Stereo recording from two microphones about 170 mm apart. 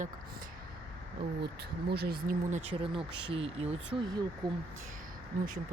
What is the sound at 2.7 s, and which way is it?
Speech, 30° right (ahead or behind).